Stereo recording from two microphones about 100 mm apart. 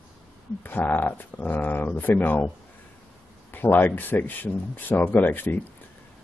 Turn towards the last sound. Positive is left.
turn(degrees=20)  # may be behind; listen again after turning